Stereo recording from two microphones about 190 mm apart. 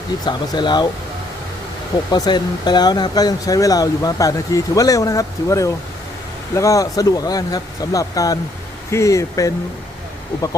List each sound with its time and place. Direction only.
0.3 s speech: 20° left (ahead or behind)
2.1 s speech: 20° left (ahead or behind)